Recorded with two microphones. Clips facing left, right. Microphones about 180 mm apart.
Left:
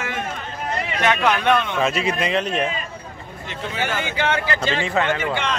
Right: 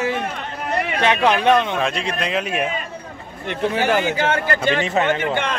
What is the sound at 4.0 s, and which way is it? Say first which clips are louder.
Speech: right 3 dB; 40° right (ahead or behind).